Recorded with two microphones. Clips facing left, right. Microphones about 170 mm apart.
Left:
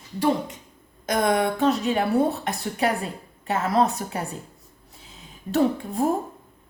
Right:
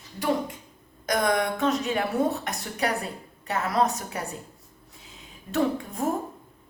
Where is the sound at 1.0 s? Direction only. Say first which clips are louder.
Left 3 dB; 25° left (ahead or behind).